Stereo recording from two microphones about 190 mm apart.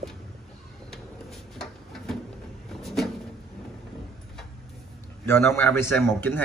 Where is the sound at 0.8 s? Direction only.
Centre (ahead or behind).